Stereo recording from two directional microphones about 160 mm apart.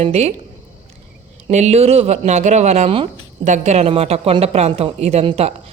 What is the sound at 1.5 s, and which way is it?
A woman's voice, 45° right (ahead or behind).